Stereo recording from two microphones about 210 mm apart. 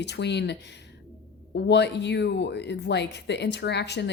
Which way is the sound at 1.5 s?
55° left (ahead or behind).